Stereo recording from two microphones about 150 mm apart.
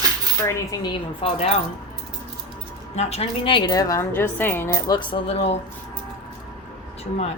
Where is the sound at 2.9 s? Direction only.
45° left (ahead or behind); by 4.9 s 15° left (ahead or behind).